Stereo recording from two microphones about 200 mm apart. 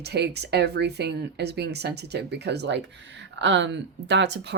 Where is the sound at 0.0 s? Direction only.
55° right (ahead or behind).